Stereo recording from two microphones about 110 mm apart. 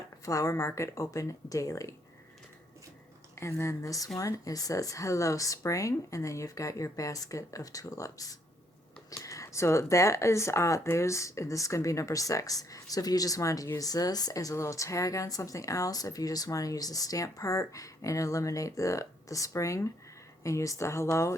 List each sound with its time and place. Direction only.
0.3 s speech: 30° left (ahead or behind)
3.3 s speech: 25° left (ahead or behind)